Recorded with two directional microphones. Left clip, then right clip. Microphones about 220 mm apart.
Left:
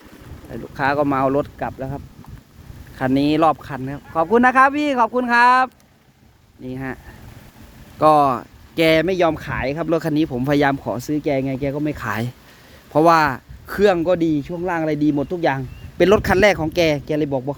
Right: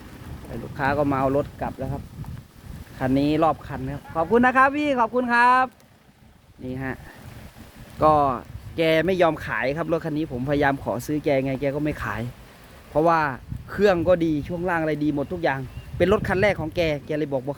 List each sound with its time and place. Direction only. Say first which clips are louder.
0.8 s speech: left 4 dB; 35° left (ahead or behind)
3.0 s speech: left 4 dB; 40° left (ahead or behind)
4.4 s speech: left 4 dB; 20° left (ahead or behind)
12.0 s speech: left 5 dB; 35° left (ahead or behind); by 17.5 s 20° left (ahead or behind)